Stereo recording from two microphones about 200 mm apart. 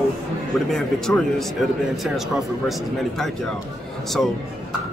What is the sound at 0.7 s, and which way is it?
Speech, 5° left (ahead or behind).